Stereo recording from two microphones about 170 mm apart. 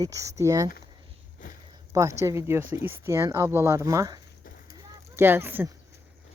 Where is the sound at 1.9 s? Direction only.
20° right (ahead or behind).